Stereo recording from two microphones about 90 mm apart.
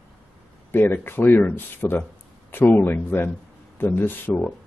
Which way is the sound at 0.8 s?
25° left (ahead or behind).